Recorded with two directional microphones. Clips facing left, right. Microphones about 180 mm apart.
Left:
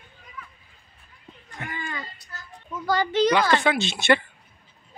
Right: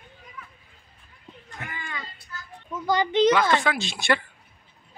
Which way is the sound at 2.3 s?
35° left (ahead or behind).